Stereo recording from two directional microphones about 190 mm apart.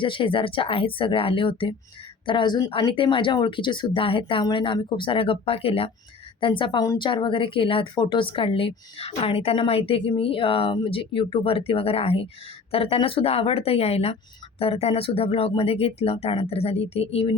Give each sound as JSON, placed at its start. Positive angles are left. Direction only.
{"t": 0.0, "sound": "a woman's voice", "side_deg": 25}